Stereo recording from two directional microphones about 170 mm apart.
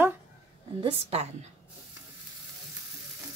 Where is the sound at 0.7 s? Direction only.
35° right (ahead or behind).